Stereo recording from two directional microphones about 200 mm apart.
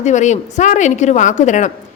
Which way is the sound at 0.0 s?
35° left (ahead or behind).